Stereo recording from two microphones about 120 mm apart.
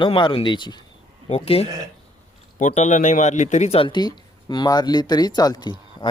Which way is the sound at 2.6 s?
85° left.